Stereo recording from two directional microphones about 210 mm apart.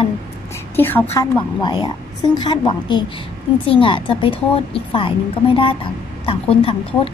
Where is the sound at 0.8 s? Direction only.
10° left (ahead or behind).